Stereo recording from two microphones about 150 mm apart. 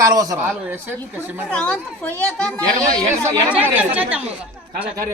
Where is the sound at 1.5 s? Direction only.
10° left (ahead or behind).